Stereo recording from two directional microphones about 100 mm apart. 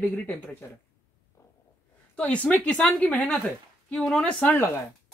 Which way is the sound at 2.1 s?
15° left (ahead or behind).